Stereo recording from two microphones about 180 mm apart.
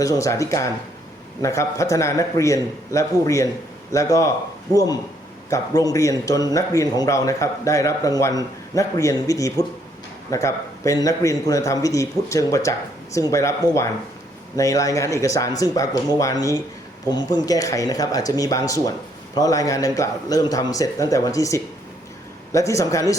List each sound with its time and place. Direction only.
0.0 s a man's voice: 20° left (ahead or behind)